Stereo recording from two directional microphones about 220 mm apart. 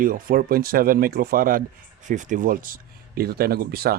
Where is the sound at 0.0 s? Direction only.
40° right (ahead or behind).